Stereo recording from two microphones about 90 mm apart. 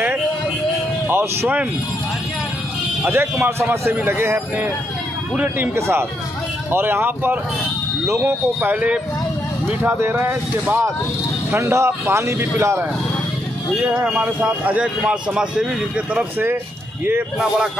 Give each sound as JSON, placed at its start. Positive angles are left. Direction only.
{"t": 1.0, "sound": "a sound", "side_deg": -25}
{"t": 3.1, "sound": "a man's voice", "side_deg": -30}
{"t": 5.3, "sound": "speech", "side_deg": -15}
{"t": 5.8, "sound": "a man's voice", "side_deg": -30}
{"t": 8.7, "sound": "speech", "side_deg": -15}
{"t": 9.7, "sound": "a man's voice", "side_deg": -25}
{"t": 13.7, "sound": "a man's voice", "side_deg": -10}